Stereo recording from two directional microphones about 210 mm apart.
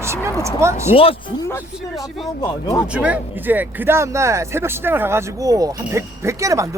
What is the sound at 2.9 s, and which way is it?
Speech, 5° right (ahead or behind).